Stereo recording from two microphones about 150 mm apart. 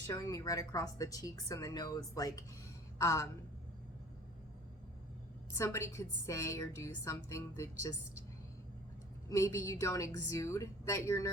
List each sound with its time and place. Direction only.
0.1 s a woman's voice: 25° left (ahead or behind)
5.5 s a woman's voice: 15° left (ahead or behind)
9.3 s a woman's voice: 20° left (ahead or behind)